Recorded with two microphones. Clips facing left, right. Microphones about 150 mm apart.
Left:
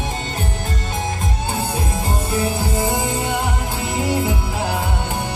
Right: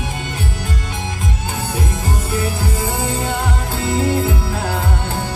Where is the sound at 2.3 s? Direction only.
25° left (ahead or behind).